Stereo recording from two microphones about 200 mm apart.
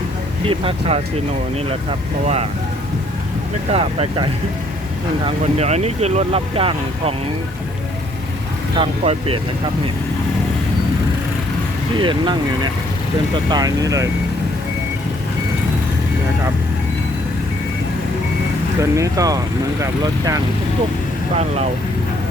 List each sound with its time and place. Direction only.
0.4 s speech: 25° right (ahead or behind)
2.2 s speech: 30° right (ahead or behind)
3.7 s speech: 30° right (ahead or behind)
8.8 s speech: 30° right (ahead or behind)
11.9 s speech: 25° right (ahead or behind)
18.8 s speech: 15° right (ahead or behind)